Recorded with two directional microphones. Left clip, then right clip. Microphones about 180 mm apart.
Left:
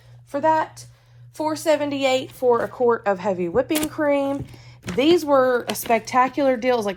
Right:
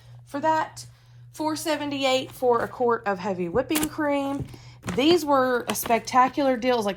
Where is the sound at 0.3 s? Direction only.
15° right (ahead or behind).